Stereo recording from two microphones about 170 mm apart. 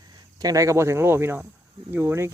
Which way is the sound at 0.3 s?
20° right (ahead or behind).